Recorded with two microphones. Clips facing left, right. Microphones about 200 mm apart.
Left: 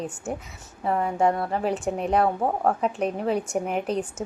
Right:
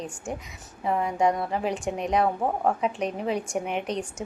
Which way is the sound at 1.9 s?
35° left (ahead or behind).